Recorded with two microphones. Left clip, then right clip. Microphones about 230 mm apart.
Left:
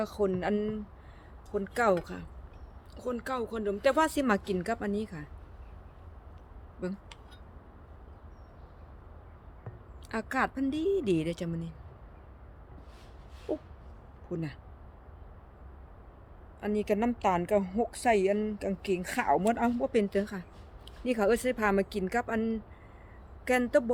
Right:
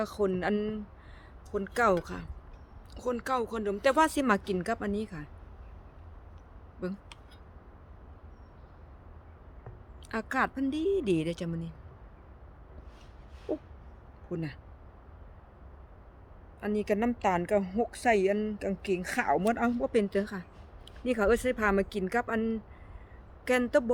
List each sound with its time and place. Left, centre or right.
0.0 s a woman's voice: centre
6.8 s a woman's voice: centre
10.1 s a woman's voice: centre
13.5 s a sound: centre
14.3 s a woman's voice: centre
16.6 s a woman's voice: centre